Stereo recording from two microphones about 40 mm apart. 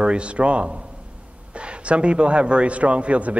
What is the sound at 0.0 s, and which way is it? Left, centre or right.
A man's voice, right.